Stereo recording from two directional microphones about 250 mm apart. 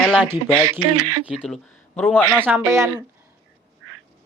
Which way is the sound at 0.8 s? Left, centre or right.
Right.